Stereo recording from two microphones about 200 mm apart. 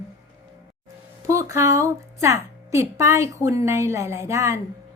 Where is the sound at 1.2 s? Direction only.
15° right (ahead or behind).